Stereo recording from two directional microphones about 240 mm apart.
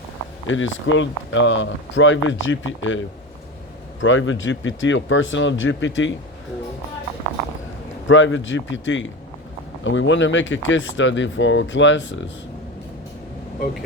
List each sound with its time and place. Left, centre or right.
0.4 s speech: left
4.0 s speech: left
8.0 s speech: left